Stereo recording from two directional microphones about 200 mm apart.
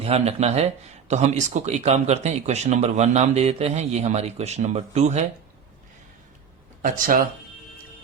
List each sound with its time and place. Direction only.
0.0 s speech: 30° right (ahead or behind)
6.8 s speech: 45° right (ahead or behind)